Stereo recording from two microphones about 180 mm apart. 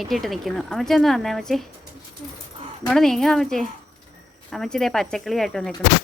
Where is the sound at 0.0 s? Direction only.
Centre (ahead or behind).